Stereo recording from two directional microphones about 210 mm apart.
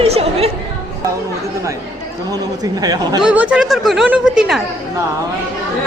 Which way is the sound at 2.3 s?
20° right (ahead or behind).